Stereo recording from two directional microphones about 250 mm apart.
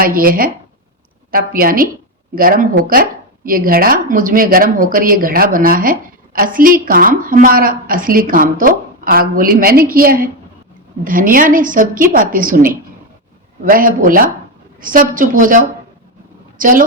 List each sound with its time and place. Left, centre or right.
0.0 s a woman's voice: right